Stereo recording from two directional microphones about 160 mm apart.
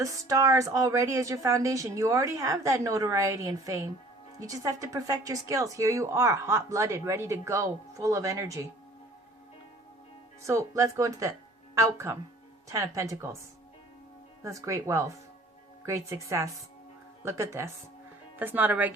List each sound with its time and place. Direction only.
0.0 s speech: 20° right (ahead or behind)
10.4 s speech: 20° right (ahead or behind)
14.4 s speech: 20° right (ahead or behind)